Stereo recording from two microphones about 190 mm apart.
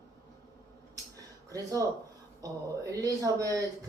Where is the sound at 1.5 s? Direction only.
20° right (ahead or behind).